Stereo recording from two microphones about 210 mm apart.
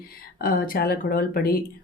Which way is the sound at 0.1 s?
45° left (ahead or behind).